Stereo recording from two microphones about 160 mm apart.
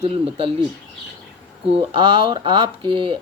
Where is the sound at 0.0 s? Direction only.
40° right (ahead or behind).